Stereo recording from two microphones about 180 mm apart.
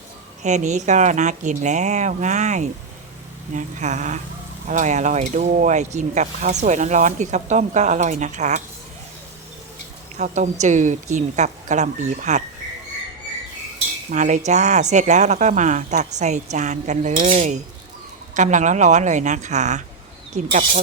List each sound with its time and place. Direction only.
0.4 s speech: 40° right (ahead or behind)
10.2 s speech: 45° right (ahead or behind)
14.1 s speech: 45° right (ahead or behind)